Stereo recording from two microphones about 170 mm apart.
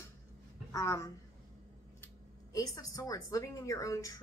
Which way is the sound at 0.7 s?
20° left (ahead or behind).